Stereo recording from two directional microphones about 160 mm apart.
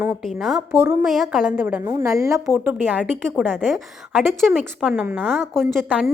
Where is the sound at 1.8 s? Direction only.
20° right (ahead or behind).